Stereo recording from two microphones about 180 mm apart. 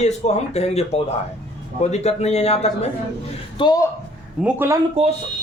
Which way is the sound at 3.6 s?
25° left (ahead or behind).